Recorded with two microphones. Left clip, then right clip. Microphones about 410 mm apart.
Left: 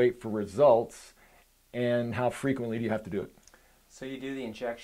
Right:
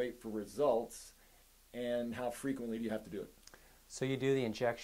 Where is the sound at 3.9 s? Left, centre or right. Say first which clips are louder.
Right 4 dB; right.